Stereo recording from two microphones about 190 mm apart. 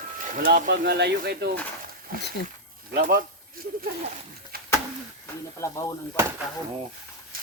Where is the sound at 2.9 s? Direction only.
50° right (ahead or behind).